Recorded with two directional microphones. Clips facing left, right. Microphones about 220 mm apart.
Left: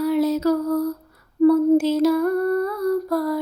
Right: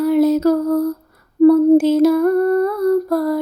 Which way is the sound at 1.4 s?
50° right (ahead or behind).